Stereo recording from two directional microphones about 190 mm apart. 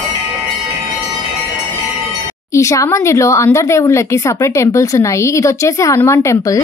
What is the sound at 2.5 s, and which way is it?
Speech, 15° left (ahead or behind).